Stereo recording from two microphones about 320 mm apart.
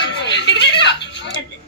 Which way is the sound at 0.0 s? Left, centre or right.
Left.